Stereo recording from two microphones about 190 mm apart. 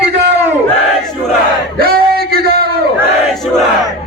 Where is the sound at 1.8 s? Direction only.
50° right (ahead or behind).